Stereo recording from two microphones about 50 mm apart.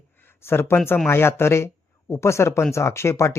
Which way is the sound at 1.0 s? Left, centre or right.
Left.